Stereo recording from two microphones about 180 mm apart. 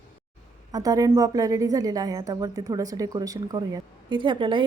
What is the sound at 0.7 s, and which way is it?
A woman's voice, 20° right (ahead or behind).